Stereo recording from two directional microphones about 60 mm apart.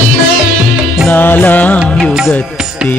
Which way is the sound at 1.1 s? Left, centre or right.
Left.